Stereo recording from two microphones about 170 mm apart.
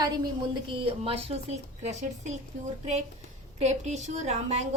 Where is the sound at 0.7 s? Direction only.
35° right (ahead or behind).